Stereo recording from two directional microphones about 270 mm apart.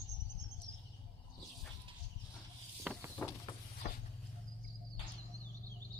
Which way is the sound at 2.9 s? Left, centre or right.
Centre.